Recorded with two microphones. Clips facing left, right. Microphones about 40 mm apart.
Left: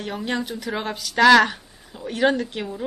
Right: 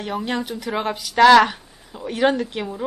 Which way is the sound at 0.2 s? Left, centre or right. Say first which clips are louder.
Right 1 dB; centre.